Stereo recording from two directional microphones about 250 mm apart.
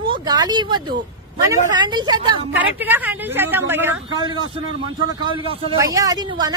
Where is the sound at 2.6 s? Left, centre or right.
Centre.